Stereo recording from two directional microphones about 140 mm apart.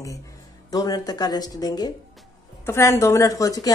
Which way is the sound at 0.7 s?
30° left (ahead or behind).